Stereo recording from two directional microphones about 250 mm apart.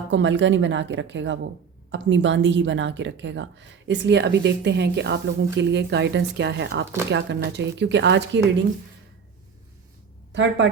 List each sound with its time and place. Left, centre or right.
0.1 s speech: right
10.3 s speech: right